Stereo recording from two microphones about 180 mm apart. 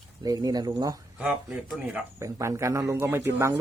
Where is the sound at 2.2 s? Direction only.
15° right (ahead or behind).